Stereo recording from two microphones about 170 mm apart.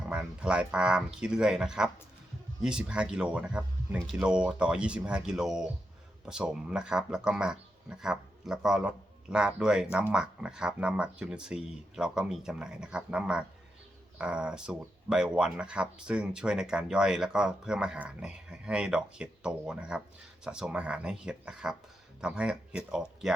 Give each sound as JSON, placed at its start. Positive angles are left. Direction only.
{"t": 0.1, "sound": "speech", "side_deg": -5}